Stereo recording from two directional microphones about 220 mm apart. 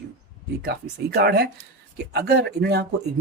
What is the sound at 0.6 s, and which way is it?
Speech, 45° right (ahead or behind).